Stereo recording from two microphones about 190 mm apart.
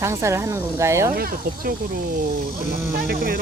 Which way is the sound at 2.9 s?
50° right (ahead or behind).